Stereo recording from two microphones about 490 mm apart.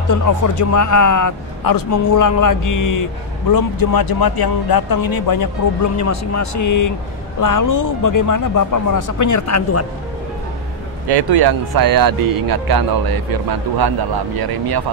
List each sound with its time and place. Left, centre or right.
0.1 s a man's voice: left
11.1 s speech: right